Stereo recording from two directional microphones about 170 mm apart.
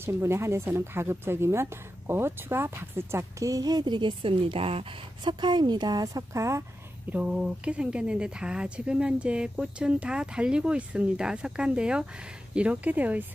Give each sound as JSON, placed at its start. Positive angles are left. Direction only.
{"t": 0.0, "sound": "speech", "side_deg": -15}
{"t": 7.1, "sound": "speech", "side_deg": -10}